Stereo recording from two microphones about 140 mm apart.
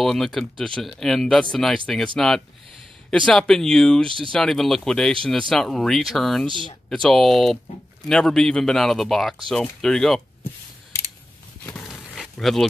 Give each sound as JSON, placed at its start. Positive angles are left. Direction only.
{"t": 0.0, "sound": "speech", "side_deg": 0}
{"t": 6.4, "sound": "speech", "side_deg": -35}
{"t": 6.9, "sound": "speech", "side_deg": 0}
{"t": 11.8, "sound": "a sound", "side_deg": 0}